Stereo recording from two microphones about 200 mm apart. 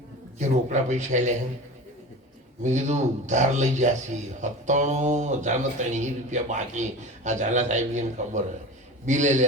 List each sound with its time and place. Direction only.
0.3 s a man's voice: 35° right (ahead or behind)
2.6 s a man's voice: 35° right (ahead or behind)